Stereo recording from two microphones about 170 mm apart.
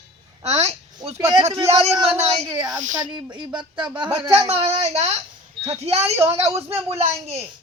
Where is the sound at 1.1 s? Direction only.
20° right (ahead or behind).